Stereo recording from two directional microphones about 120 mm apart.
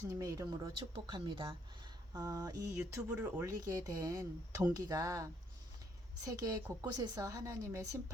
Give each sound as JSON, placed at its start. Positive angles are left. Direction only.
{"t": 0.0, "sound": "speech", "side_deg": -25}
{"t": 0.9, "sound": "speech", "side_deg": -40}
{"t": 2.1, "sound": "a woman's voice", "side_deg": -30}
{"t": 3.2, "sound": "speech", "side_deg": -20}
{"t": 3.8, "sound": "a woman's voice", "side_deg": -30}